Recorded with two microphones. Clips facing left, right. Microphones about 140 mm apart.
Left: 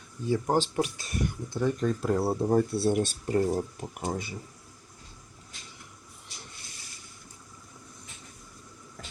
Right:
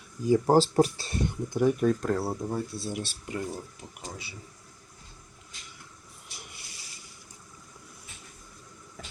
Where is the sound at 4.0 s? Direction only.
50° left (ahead or behind).